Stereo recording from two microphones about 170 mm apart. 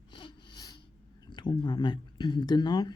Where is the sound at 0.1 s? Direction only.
25° left (ahead or behind).